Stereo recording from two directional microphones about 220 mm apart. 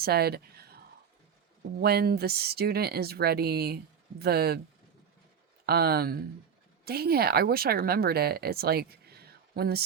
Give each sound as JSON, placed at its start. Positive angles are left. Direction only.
{"t": 0.0, "sound": "speech", "side_deg": -45}
{"t": 1.8, "sound": "speech", "side_deg": -45}
{"t": 5.6, "sound": "speech", "side_deg": -45}